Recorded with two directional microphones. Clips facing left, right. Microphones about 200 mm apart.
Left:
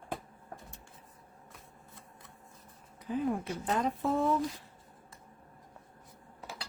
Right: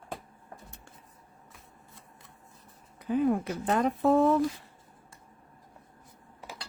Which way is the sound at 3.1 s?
65° right (ahead or behind).